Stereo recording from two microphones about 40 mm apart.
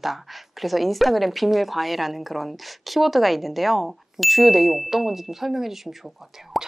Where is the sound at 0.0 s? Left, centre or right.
Centre.